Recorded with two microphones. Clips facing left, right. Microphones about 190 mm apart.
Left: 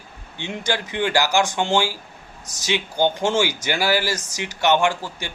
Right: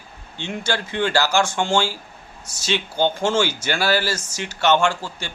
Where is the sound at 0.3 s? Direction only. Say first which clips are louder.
Even; 15° left (ahead or behind).